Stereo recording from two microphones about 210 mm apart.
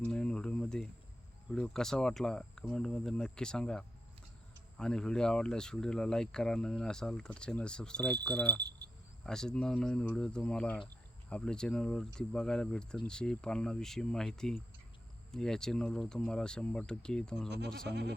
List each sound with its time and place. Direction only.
0.0 s a sound: 5° left (ahead or behind)
1.5 s speech: centre (ahead or behind)
8.6 s speech: 50° right (ahead or behind)
9.2 s speech: 5° left (ahead or behind)
17.8 s speech: 55° right (ahead or behind)